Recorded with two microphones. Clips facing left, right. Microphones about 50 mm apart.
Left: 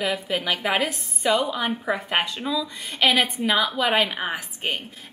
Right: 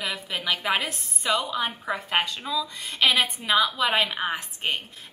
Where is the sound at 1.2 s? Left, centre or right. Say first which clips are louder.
Left 4 dB; left.